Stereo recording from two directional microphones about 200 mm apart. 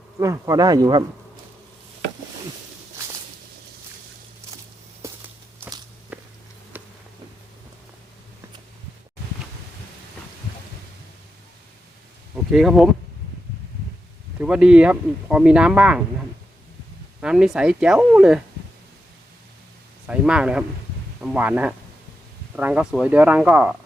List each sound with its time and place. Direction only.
0.2 s speech: 15° right (ahead or behind)
5.0 s walk: 15° right (ahead or behind)
6.7 s a sound: 10° right (ahead or behind)
12.5 s speech: centre (ahead or behind)
14.3 s speech: 5° right (ahead or behind)
17.2 s speech: 5° right (ahead or behind)
20.1 s speech: 5° right (ahead or behind)